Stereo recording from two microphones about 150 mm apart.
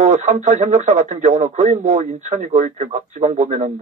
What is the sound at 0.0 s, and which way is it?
Speech, 55° right (ahead or behind).